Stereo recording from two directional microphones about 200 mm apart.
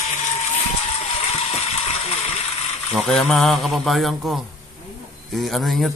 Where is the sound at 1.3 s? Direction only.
35° left (ahead or behind).